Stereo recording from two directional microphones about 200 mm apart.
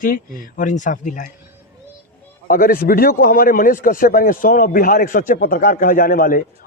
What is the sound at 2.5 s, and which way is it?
A man's voice, 45° left (ahead or behind).